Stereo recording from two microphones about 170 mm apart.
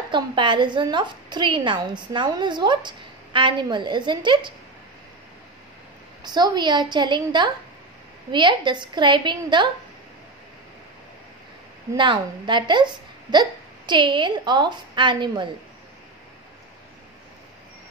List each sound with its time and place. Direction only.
0.1 s speech: 30° right (ahead or behind)
6.2 s speech: 25° right (ahead or behind)
11.9 s speech: 25° right (ahead or behind)